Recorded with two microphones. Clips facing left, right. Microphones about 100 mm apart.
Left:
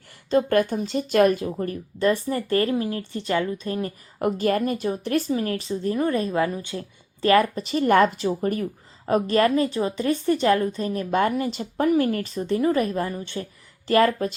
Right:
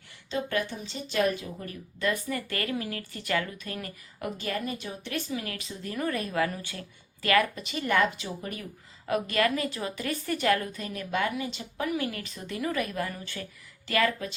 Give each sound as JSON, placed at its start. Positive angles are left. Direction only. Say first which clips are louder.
{"t": 0.3, "sound": "a woman's voice", "louder": "left 10 dB", "side_deg": 50}
{"t": 4.2, "sound": "a woman's voice", "louder": "left 11 dB", "side_deg": 50}